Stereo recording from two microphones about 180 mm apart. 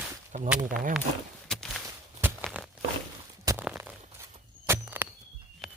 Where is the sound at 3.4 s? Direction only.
10° right (ahead or behind).